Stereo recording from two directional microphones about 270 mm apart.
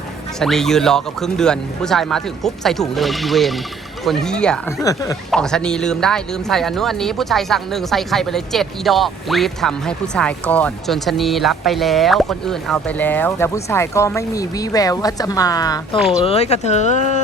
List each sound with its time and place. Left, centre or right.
0.3 s speech: centre
16.0 s speech: centre
16.2 s speech: left